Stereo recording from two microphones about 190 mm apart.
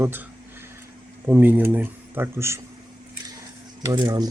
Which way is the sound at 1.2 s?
10° right (ahead or behind).